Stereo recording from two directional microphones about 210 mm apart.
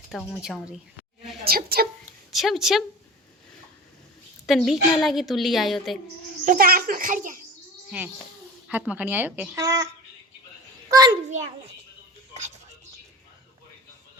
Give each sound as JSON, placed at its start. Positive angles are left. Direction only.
{"t": 0.1, "sound": "a woman's voice", "side_deg": 0}
{"t": 1.5, "sound": "a woman's voice", "side_deg": -45}
{"t": 2.3, "sound": "a woman's voice", "side_deg": 0}
{"t": 4.4, "sound": "a woman's voice", "side_deg": 0}
{"t": 6.4, "sound": "a child's voice", "side_deg": -40}
{"t": 7.9, "sound": "a child's voice", "side_deg": -5}
{"t": 10.8, "sound": "a sound", "side_deg": -20}